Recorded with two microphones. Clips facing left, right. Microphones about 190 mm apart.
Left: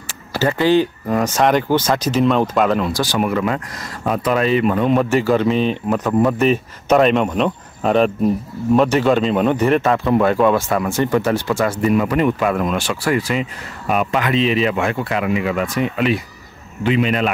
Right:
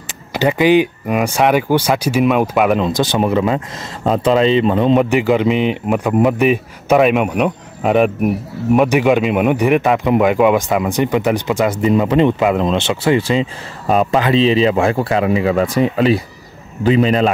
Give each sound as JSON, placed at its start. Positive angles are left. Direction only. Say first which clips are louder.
{"t": 0.3, "sound": "speech", "louder": "right 3 dB", "side_deg": -15}
{"t": 2.8, "sound": "a man's voice", "louder": "right 3 dB", "side_deg": -20}